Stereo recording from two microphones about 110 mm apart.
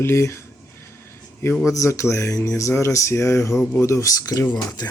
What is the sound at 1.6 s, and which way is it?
Speech, 30° left (ahead or behind).